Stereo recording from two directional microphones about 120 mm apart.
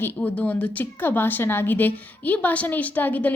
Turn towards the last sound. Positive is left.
turn(degrees=15)  # may be behind; listen again after turning